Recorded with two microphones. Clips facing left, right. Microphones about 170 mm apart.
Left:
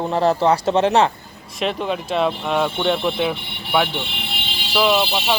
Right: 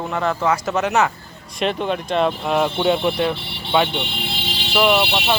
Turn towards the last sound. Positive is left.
turn(degrees=0)  # may be behind; listen again after turning